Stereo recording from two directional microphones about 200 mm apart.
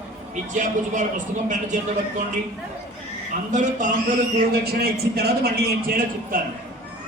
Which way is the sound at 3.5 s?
40° right (ahead or behind).